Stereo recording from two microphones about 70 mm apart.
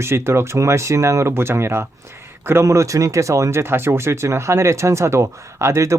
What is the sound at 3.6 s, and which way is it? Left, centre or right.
Speech, right.